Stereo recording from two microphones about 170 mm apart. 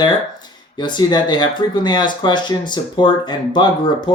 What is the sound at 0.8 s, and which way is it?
Speech, 25° left (ahead or behind).